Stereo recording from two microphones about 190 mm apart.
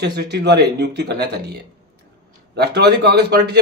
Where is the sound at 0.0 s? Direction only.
60° right (ahead or behind).